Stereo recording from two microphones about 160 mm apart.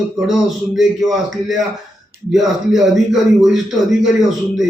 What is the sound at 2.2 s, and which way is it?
A man's voice, centre (ahead or behind).